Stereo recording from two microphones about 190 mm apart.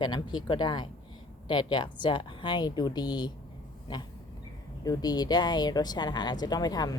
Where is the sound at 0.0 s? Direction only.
20° left (ahead or behind).